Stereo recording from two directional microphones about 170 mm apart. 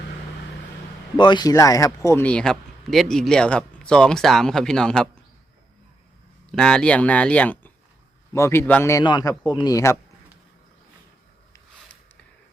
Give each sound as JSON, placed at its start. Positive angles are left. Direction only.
{"t": 1.1, "sound": "speech", "side_deg": 25}
{"t": 6.5, "sound": "a man's voice", "side_deg": 5}